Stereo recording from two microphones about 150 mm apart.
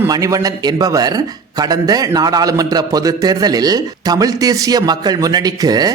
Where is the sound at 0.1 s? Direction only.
20° right (ahead or behind).